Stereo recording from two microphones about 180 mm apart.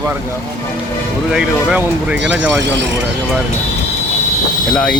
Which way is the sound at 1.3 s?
5° right (ahead or behind).